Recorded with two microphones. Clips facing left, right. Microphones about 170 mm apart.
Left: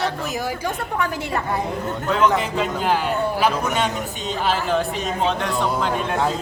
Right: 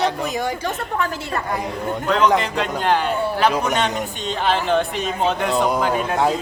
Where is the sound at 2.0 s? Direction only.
5° left (ahead or behind).